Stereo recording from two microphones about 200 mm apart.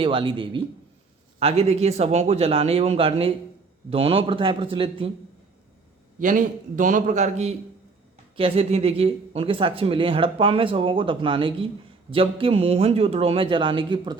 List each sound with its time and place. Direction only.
0.0 s speech: 25° right (ahead or behind)
6.1 s a man's voice: 40° right (ahead or behind); by 14.2 s 25° right (ahead or behind)